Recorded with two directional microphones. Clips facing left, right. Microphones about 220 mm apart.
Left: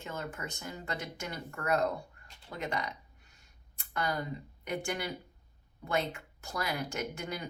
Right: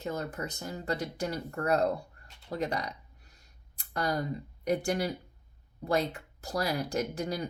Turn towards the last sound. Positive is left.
turn(degrees=-35)  # may be behind; listen again after turning